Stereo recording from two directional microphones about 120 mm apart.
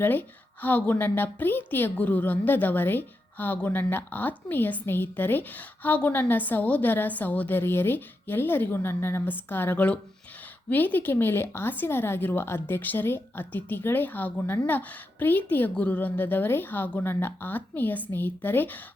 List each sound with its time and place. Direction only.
0.0 s a woman's voice: 15° left (ahead or behind)